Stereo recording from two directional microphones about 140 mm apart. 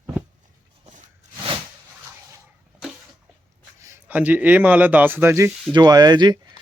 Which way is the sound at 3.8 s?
15° right (ahead or behind).